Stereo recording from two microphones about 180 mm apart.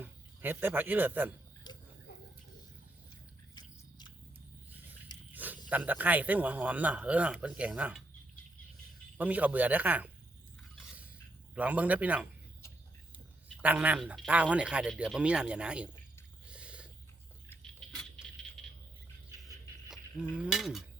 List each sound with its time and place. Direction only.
0.0 s a man's voice: 10° right (ahead or behind)
1.7 s a sound: 25° left (ahead or behind)
3.5 s biting: 25° left (ahead or behind)
5.3 s a sound: 10° right (ahead or behind)
5.6 s a man's voice: 10° right (ahead or behind)
9.1 s a man's voice: 10° right (ahead or behind)
11.5 s a man's voice: 10° right (ahead or behind)
16.5 s a sound: 5° right (ahead or behind)
20.3 s cutlery: 5° right (ahead or behind)